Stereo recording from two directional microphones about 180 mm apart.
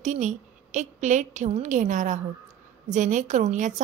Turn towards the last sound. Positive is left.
turn(degrees=-40)  # may be behind; listen again after turning